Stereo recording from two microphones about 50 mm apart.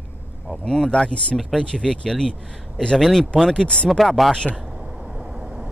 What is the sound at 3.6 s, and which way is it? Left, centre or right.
Speech, centre.